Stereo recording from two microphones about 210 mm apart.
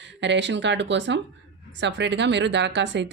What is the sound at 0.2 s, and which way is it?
Speech, 55° right (ahead or behind).